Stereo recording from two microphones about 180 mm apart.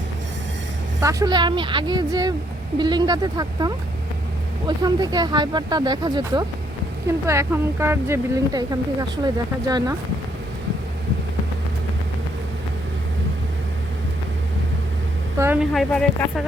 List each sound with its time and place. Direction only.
1.0 s speech: 20° right (ahead or behind)
15.4 s speech: 10° right (ahead or behind)
15.7 s speech: centre (ahead or behind)